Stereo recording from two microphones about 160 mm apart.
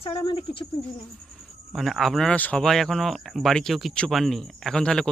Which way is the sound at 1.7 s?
Centre (ahead or behind).